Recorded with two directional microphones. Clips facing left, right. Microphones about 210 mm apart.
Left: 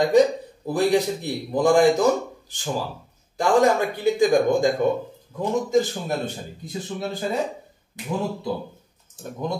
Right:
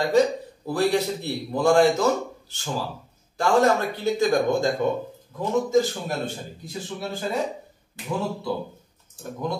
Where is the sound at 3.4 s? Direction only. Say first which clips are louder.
Left 1 dB; 15° left (ahead or behind).